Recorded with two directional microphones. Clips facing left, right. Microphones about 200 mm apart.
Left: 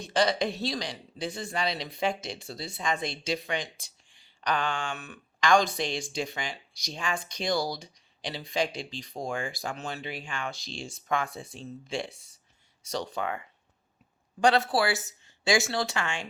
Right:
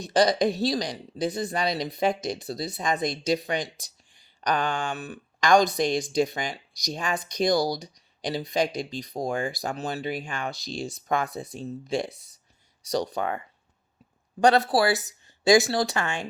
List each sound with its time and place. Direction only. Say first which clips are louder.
0.0 s speech: right 5 dB; 40° right (ahead or behind)
14.4 s speech: right 4 dB; 40° right (ahead or behind)